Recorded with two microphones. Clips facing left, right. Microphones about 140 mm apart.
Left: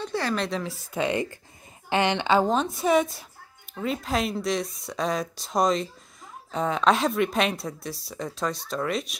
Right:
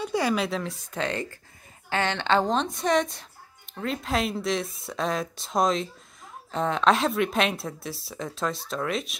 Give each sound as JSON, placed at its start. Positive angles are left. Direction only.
{"t": 0.0, "sound": "speech", "side_deg": -10}
{"t": 1.9, "sound": "speech", "side_deg": 15}